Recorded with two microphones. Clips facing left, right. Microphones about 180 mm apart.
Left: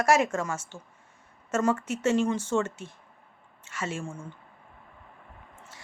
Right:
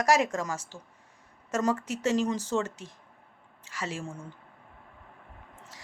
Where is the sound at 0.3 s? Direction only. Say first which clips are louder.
Left 2 dB; 35° right (ahead or behind).